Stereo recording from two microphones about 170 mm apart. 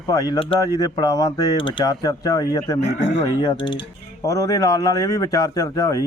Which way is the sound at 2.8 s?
90° left.